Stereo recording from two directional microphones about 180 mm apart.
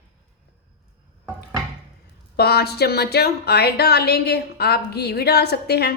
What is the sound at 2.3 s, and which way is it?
Speech, 60° left (ahead or behind).